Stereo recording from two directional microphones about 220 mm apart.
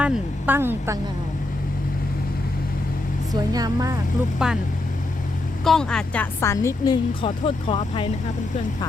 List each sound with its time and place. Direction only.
0.0 s speech: 10° right (ahead or behind)
3.5 s speech: 15° right (ahead or behind)
4.4 s speech: 5° right (ahead or behind)
5.6 s a woman's voice: centre (ahead or behind); by 8.0 s 25° left (ahead or behind)